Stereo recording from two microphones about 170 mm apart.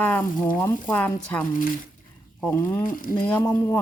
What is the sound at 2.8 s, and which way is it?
Speech, 55° left (ahead or behind).